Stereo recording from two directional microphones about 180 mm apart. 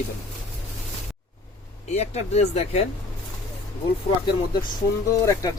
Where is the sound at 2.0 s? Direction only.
35° left (ahead or behind).